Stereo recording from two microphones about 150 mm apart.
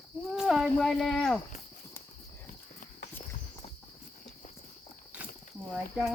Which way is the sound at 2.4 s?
65° left (ahead or behind).